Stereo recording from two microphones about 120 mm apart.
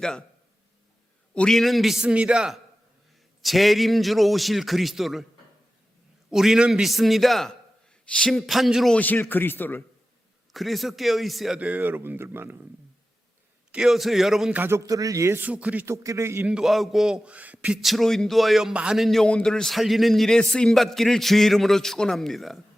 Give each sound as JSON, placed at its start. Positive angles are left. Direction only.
{"t": 0.0, "sound": "speech", "side_deg": 5}
{"t": 1.3, "sound": "speech", "side_deg": 5}
{"t": 6.3, "sound": "speech", "side_deg": -5}
{"t": 9.0, "sound": "a man's voice", "side_deg": 15}
{"t": 10.5, "sound": "speech", "side_deg": 0}
{"t": 13.7, "sound": "speech", "side_deg": -5}
{"t": 14.5, "sound": "a man's voice", "side_deg": -20}
{"t": 15.4, "sound": "speech", "side_deg": -10}
{"t": 16.0, "sound": "a man's voice", "side_deg": -25}
{"t": 16.5, "sound": "speech", "side_deg": -5}
{"t": 17.7, "sound": "speech", "side_deg": 0}